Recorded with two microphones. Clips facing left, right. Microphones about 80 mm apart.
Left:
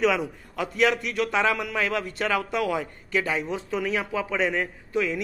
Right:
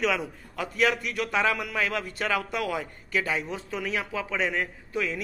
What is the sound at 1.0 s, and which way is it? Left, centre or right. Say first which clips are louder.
A man's voice: left 2 dB; centre.